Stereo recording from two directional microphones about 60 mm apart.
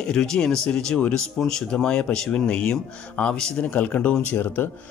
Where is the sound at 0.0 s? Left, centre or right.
Centre.